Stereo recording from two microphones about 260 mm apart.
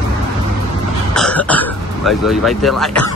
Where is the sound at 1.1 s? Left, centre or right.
Centre.